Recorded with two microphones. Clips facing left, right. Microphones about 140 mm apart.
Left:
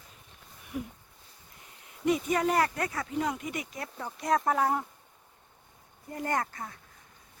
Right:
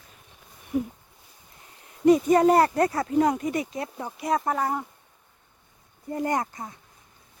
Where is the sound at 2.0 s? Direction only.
40° right (ahead or behind).